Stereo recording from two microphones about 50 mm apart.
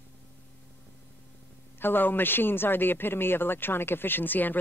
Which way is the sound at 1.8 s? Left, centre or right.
Left.